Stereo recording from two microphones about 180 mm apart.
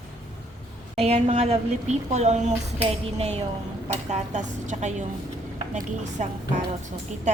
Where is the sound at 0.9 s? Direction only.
35° right (ahead or behind).